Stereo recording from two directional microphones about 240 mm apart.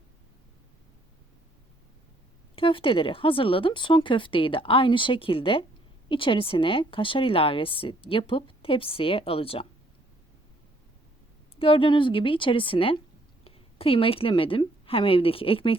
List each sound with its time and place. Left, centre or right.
2.6 s speech: left
11.6 s a woman's voice: left